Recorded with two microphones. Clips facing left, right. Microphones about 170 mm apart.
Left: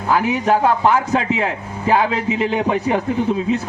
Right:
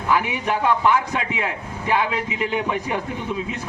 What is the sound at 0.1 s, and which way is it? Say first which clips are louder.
A man's voice: left 5 dB; 40° left (ahead or behind).